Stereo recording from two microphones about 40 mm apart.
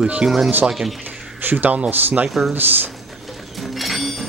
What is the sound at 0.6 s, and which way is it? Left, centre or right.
Speech, centre.